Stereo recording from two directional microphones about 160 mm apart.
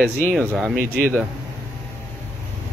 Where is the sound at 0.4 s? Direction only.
5° right (ahead or behind).